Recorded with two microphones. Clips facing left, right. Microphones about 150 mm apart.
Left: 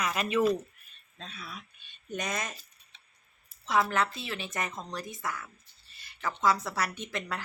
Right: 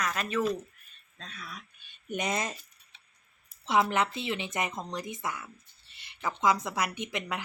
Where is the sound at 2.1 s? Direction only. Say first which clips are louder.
Right 3 dB; 25° right (ahead or behind).